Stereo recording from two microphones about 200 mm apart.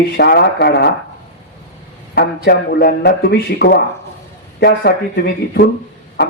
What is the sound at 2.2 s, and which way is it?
Speech, 55° left (ahead or behind).